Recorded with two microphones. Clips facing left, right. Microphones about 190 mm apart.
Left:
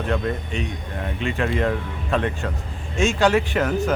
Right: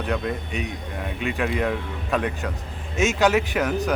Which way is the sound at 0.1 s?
5° right (ahead or behind).